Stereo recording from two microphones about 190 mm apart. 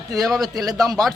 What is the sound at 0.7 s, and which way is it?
Speech, 20° right (ahead or behind).